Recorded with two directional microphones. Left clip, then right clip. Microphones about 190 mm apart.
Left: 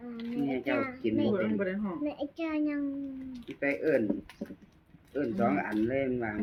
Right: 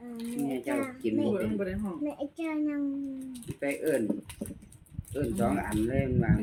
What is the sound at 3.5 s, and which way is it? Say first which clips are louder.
Speech: left 1 dB; centre (ahead or behind).